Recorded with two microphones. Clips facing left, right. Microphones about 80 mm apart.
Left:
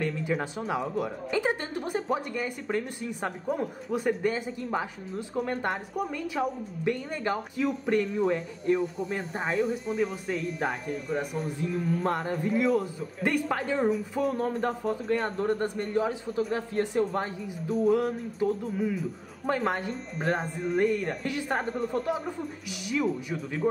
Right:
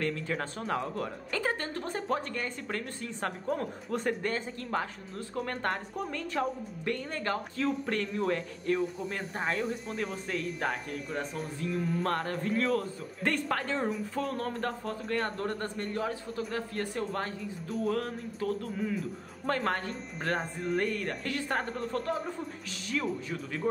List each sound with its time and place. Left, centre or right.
0.0 s speech: centre
20.3 s speech: centre